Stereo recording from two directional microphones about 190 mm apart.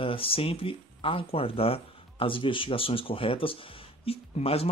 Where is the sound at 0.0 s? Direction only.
30° left (ahead or behind).